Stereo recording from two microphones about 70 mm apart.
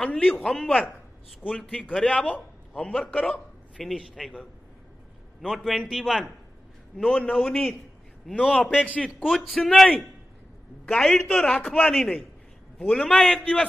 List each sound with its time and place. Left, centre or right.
0.0 s a man's voice: centre
3.8 s a man's voice: centre
7.0 s a man's voice: centre
8.4 s a man's voice: centre
8.6 s a man's voice: centre
9.2 s a man's voice: centre
10.9 s a man's voice: centre